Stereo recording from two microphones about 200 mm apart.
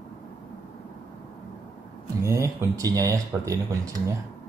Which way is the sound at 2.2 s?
15° right (ahead or behind).